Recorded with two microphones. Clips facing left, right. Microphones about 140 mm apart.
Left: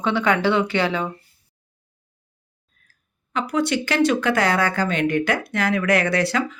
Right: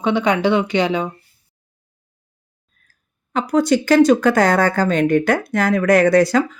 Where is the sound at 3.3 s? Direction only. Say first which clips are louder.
Right 6 dB; 40° right (ahead or behind).